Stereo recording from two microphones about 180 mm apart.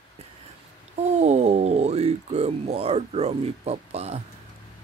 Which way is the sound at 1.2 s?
40° right (ahead or behind).